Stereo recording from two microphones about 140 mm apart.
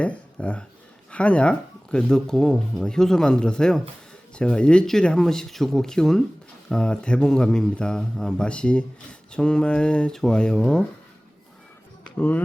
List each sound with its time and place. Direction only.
0.0 s speech: 10° left (ahead or behind)